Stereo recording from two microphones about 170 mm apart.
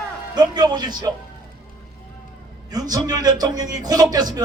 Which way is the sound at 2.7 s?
25° right (ahead or behind).